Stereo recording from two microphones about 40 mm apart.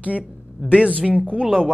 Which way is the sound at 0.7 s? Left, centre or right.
Right.